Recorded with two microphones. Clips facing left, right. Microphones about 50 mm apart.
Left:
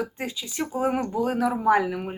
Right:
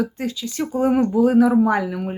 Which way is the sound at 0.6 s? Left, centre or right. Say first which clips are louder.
Right 7 dB; centre.